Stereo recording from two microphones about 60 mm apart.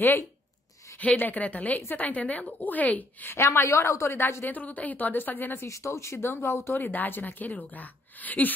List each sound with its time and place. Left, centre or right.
0.9 s a woman's voice: left
3.3 s speech: left
4.2 s speech: left
4.5 s a woman's voice: left
5.7 s speech: left
6.8 s a woman's voice: left